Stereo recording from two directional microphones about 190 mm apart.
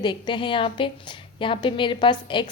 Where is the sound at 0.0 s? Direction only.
25° left (ahead or behind).